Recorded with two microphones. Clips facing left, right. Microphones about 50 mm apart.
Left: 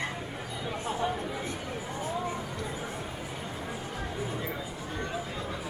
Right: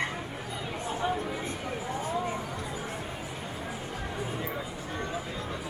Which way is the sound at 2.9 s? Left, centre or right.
Right.